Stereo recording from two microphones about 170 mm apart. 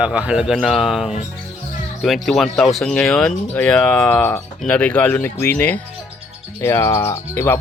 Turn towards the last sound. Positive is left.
turn(degrees=15)  # may be behind; listen again after turning